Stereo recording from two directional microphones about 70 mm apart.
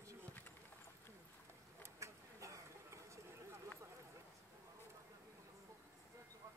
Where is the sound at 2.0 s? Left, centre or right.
Right.